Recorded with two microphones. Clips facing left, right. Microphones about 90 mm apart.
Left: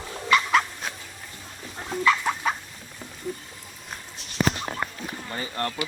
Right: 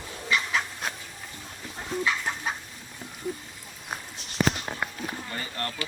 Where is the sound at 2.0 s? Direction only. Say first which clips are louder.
Left 8 dB; 75° left (ahead or behind).